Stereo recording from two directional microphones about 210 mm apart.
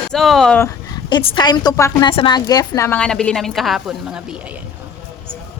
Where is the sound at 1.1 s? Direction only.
20° left (ahead or behind); by 3.8 s centre (ahead or behind).